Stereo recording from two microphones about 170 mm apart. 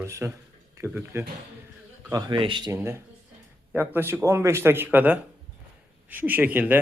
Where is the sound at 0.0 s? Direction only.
15° right (ahead or behind).